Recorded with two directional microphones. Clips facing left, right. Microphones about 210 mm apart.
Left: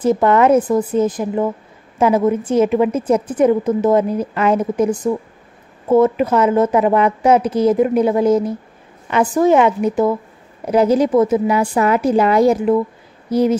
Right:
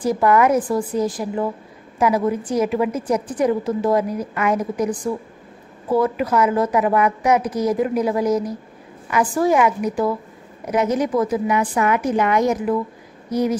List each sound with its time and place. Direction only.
0.0 s a woman's voice: 25° left (ahead or behind)